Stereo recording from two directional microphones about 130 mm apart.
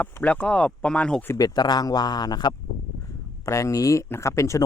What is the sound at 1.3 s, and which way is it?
Speech, 30° left (ahead or behind).